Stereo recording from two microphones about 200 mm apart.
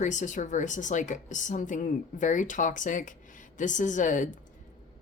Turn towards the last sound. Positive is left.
turn(degrees=40)  # may be behind; listen again after turning